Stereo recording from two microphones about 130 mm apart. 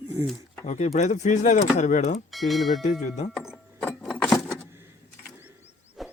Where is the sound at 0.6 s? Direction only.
65° left (ahead or behind).